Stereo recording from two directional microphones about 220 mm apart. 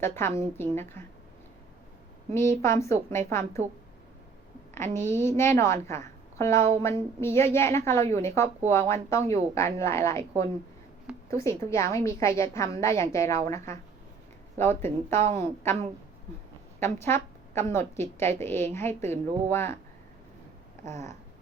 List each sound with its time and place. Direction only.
0.0 s a woman's voice: 10° left (ahead or behind)
2.3 s a woman's voice: 10° left (ahead or behind)
4.9 s a woman's voice: 10° left (ahead or behind)
11.3 s a woman's voice: 15° left (ahead or behind)
14.8 s a woman's voice: 10° left (ahead or behind)
16.8 s a woman's voice: 10° left (ahead or behind)
20.8 s a sound: 30° right (ahead or behind)